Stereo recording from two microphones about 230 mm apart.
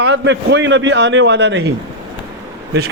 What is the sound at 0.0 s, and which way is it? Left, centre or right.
A man's voice, right.